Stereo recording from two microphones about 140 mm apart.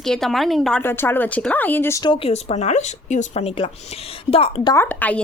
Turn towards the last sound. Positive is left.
turn(degrees=10)  # may be behind; listen again after turning